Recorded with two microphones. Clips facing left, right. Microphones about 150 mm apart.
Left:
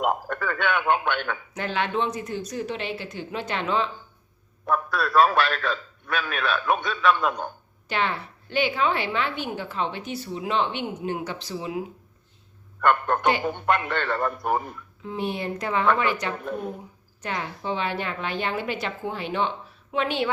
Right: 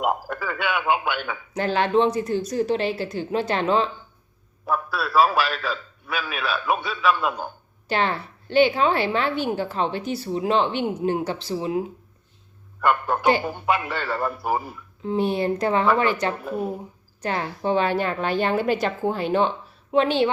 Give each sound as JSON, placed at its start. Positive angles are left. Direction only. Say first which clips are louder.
{"t": 0.0, "sound": "a man's voice", "louder": "even", "side_deg": -5}
{"t": 1.5, "sound": "a woman's voice", "louder": "right 7 dB", "side_deg": -35}
{"t": 4.6, "sound": "a man's voice", "louder": "left 1 dB", "side_deg": -5}
{"t": 7.9, "sound": "a woman's voice", "louder": "right 3 dB", "side_deg": -35}
{"t": 12.8, "sound": "a man's voice", "louder": "right 1 dB", "side_deg": -5}
{"t": 15.0, "sound": "a woman's voice", "louder": "right 7 dB", "side_deg": -35}
{"t": 16.4, "sound": "a man's voice", "louder": "right 3 dB", "side_deg": -5}
{"t": 17.2, "sound": "a woman's voice", "louder": "right 4 dB", "side_deg": -35}